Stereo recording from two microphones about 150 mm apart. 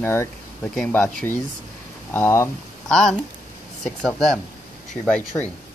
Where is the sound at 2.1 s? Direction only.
15° left (ahead or behind).